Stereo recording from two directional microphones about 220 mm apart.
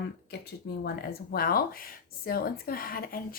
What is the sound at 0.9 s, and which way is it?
Speech, 45° left (ahead or behind).